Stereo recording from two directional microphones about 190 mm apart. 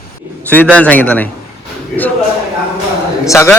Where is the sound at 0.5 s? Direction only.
10° left (ahead or behind).